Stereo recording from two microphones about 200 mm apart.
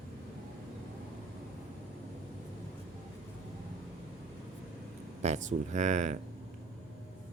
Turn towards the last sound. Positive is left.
turn(degrees=-35)  # may be behind; listen again after turning